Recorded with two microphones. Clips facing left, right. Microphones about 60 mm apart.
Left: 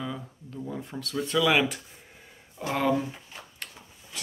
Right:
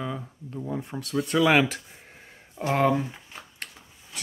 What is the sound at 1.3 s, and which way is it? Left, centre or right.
Speech, right.